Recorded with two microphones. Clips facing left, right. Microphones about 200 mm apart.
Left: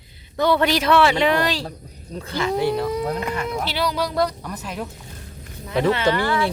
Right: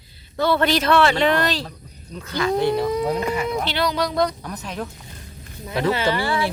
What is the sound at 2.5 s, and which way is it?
Speech, 10° left (ahead or behind).